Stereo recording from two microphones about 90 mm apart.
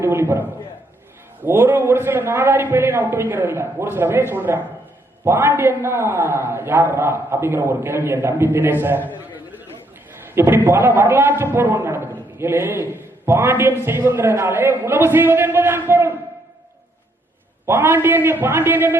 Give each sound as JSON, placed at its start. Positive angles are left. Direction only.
{"t": 0.0, "sound": "a man's voice", "side_deg": -25}
{"t": 1.5, "sound": "a man's voice", "side_deg": -25}
{"t": 10.3, "sound": "a man's voice", "side_deg": -25}
{"t": 17.7, "sound": "a man's voice", "side_deg": -25}